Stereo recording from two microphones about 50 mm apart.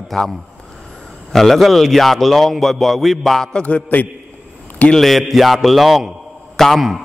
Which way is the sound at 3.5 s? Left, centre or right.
Left.